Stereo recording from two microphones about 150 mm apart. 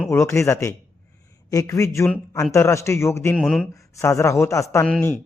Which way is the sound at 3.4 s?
Centre (ahead or behind).